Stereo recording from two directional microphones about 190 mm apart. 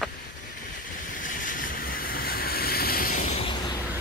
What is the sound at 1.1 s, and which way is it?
Vehicle, 45° left (ahead or behind).